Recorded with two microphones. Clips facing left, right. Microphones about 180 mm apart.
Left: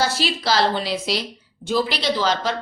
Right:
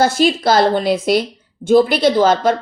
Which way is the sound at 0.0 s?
50° right (ahead or behind).